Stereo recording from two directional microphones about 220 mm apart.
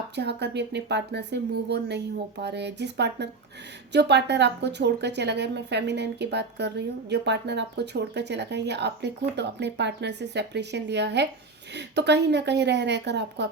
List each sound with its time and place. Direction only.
0.2 s speech: 50° right (ahead or behind)